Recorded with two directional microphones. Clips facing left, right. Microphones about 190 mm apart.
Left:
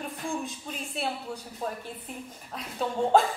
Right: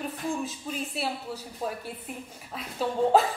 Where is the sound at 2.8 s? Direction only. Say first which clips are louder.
Right 1 dB; 5° right (ahead or behind).